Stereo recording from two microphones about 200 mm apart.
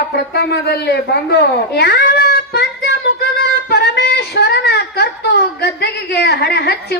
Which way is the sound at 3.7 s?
55° left (ahead or behind).